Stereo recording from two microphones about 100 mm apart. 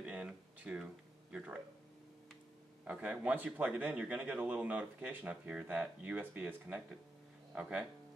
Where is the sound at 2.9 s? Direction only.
15° right (ahead or behind).